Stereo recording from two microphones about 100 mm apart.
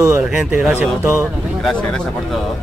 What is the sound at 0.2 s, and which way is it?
Speech, 10° right (ahead or behind).